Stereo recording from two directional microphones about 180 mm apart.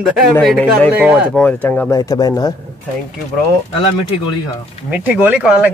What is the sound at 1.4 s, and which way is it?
Speech, 10° left (ahead or behind).